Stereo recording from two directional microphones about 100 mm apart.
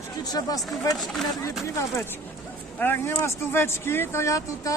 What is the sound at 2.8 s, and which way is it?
Speech, 25° left (ahead or behind).